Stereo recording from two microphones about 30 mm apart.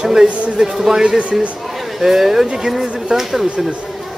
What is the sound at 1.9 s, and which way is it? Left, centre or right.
Speech, centre.